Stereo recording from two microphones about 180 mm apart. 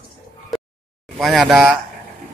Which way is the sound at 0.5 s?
Centre (ahead or behind).